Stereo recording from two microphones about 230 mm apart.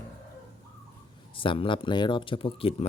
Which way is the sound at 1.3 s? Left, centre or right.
Left.